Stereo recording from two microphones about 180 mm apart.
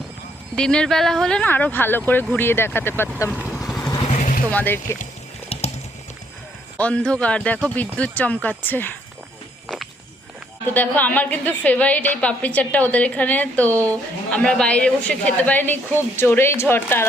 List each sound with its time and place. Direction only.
0.5 s a woman's voice: 5° left (ahead or behind)
3.5 s vehicle: centre (ahead or behind)
3.8 s vehicle: 20° left (ahead or behind)
4.1 s vehicle: 45° left (ahead or behind)
4.5 s a woman's voice: 10° left (ahead or behind)
6.7 s a woman's voice: 5° left (ahead or behind)
9.6 s walk: centre (ahead or behind)
10.8 s a woman's voice: 10° left (ahead or behind)